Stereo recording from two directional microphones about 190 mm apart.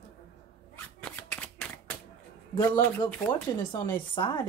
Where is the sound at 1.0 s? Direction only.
5° left (ahead or behind).